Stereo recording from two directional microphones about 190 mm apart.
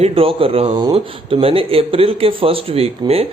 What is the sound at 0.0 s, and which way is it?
A man's voice, 30° right (ahead or behind).